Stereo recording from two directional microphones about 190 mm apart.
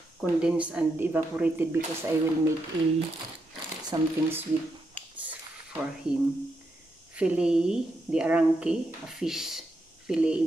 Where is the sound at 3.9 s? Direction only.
25° right (ahead or behind).